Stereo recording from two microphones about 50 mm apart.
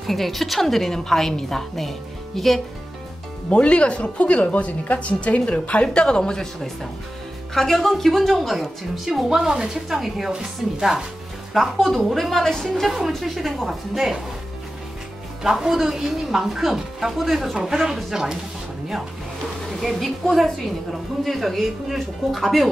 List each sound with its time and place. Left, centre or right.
0.0 s a woman's voice: centre
3.4 s a woman's voice: left; by 11.1 s centre
11.5 s a woman's voice: centre
15.4 s speech: centre
19.8 s a woman's voice: centre